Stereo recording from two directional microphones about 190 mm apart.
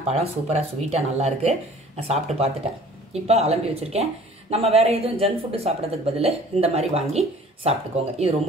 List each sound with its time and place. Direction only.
0.0 s speech: 35° right (ahead or behind)